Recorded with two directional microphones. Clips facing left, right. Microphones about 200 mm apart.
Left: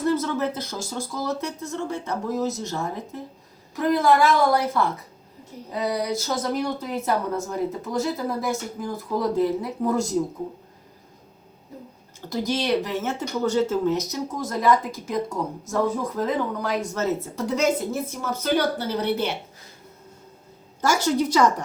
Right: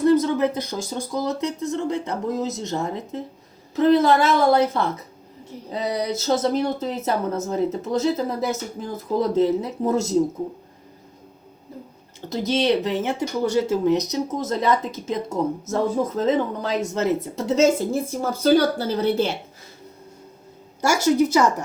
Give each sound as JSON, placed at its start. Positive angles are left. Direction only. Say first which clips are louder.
{"t": 0.1, "sound": "speech", "louder": "right 6 dB", "side_deg": -15}
{"t": 5.7, "sound": "speech", "louder": "right 1 dB", "side_deg": -20}
{"t": 12.3, "sound": "speech", "louder": "right 3 dB", "side_deg": -20}
{"t": 20.8, "sound": "speech", "louder": "right 3 dB", "side_deg": -10}